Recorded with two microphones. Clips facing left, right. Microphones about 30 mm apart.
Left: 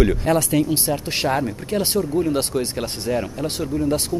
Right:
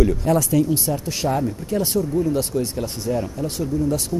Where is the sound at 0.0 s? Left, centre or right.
Left.